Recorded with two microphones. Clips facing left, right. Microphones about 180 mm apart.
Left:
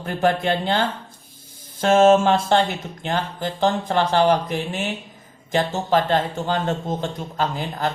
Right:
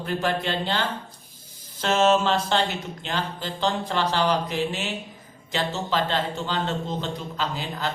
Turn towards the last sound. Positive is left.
turn(degrees=50)  # may be behind; listen again after turning